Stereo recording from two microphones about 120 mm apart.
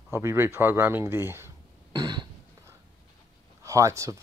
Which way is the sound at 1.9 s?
35° right (ahead or behind).